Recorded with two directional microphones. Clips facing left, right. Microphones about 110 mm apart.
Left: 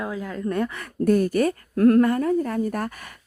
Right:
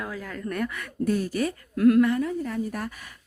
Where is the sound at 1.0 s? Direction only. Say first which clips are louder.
Left 6 dB; 50° left (ahead or behind).